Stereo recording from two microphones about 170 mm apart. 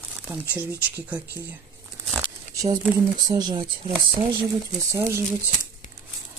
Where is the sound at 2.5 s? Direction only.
20° right (ahead or behind).